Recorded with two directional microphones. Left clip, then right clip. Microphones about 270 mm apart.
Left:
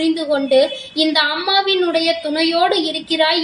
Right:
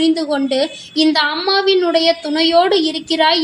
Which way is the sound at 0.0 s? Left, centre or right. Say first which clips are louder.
Right 1 dB; right.